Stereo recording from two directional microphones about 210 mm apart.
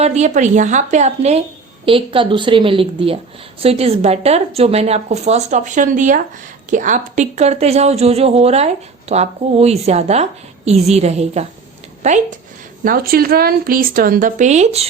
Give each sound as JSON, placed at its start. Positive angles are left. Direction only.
{"t": 0.0, "sound": "a woman's voice", "side_deg": -35}
{"t": 12.8, "sound": "a woman's voice", "side_deg": -45}